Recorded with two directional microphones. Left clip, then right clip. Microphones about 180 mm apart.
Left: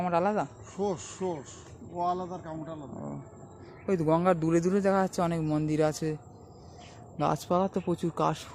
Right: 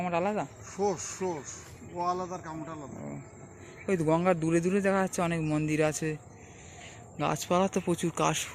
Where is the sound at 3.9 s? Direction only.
5° left (ahead or behind).